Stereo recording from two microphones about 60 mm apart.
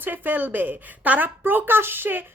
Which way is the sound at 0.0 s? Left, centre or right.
Right.